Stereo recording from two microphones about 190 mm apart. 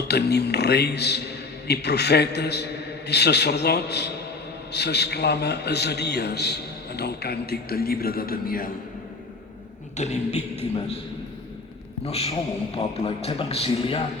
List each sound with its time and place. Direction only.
0.1 s a man's voice: 60° left (ahead or behind)
10.0 s a man's voice: 35° left (ahead or behind)
12.0 s a man's voice: 35° left (ahead or behind)